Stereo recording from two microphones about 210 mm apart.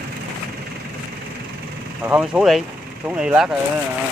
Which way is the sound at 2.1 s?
5° right (ahead or behind).